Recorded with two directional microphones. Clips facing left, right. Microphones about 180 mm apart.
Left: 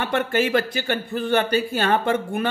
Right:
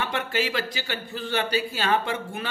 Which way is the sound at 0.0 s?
55° left (ahead or behind).